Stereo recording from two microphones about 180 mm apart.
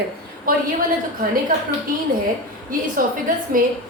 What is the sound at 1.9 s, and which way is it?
A woman's voice, 50° right (ahead or behind).